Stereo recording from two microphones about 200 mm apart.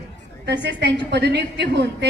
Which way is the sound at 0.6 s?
60° right (ahead or behind).